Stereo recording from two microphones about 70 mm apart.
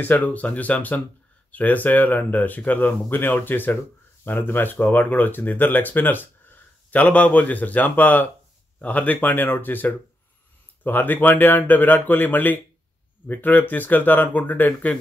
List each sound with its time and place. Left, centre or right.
0.0 s speech: left